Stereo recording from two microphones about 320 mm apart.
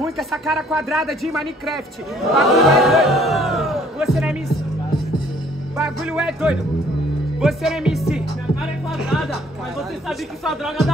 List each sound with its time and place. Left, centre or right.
0.0 s speech: centre
5.8 s music: centre
7.3 s speech: centre